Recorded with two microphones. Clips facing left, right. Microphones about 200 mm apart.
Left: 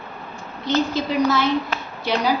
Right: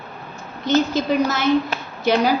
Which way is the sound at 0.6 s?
45° right (ahead or behind).